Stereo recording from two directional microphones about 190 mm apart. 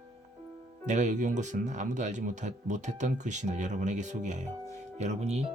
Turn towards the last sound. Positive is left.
turn(degrees=-35)  # may be behind; listen again after turning